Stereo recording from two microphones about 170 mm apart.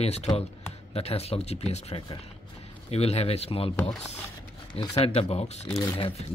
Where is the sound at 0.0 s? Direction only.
40° left (ahead or behind).